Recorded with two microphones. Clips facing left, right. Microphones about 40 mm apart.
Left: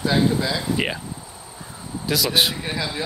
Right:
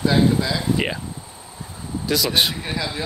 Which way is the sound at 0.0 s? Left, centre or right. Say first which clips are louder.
Right 2 dB; centre.